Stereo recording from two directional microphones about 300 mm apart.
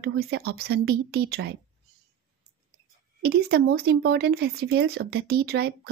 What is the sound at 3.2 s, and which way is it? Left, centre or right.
Speech, right.